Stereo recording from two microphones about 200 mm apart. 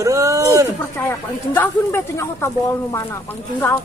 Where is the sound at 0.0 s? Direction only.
15° right (ahead or behind).